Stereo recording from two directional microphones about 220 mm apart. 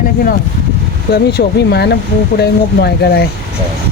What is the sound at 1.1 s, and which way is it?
Speech, 45° left (ahead or behind).